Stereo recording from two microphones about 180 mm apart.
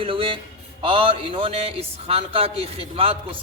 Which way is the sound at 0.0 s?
30° right (ahead or behind).